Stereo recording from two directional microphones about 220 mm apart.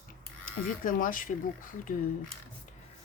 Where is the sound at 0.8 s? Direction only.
40° left (ahead or behind).